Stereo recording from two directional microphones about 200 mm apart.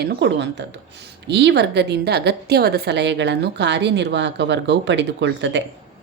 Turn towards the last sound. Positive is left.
turn(degrees=-65)  # may be behind; listen again after turning